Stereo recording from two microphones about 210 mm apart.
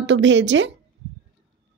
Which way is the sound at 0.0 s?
60° right (ahead or behind).